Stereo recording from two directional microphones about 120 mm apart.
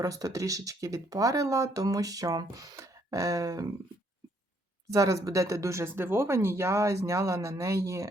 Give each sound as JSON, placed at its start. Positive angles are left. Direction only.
{"t": 0.0, "sound": "speech", "side_deg": -30}
{"t": 4.9, "sound": "speech", "side_deg": -30}